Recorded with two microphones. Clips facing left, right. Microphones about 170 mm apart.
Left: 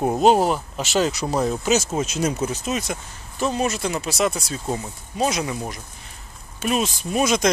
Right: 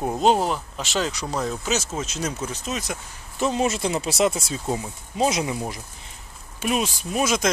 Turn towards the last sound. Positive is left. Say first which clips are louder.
# left 3 dB
turn(degrees=-5)  # may be behind; listen again after turning